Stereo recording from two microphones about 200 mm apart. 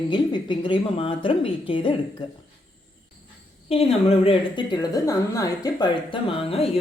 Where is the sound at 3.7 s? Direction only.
30° left (ahead or behind).